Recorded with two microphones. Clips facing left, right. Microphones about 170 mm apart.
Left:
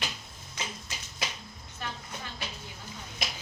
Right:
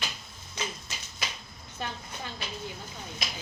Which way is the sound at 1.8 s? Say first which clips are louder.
Right 3 dB; 25° right (ahead or behind).